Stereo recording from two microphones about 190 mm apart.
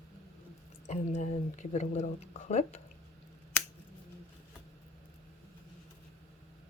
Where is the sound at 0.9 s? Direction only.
35° left (ahead or behind).